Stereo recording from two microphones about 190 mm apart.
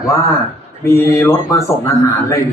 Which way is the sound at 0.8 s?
15° left (ahead or behind).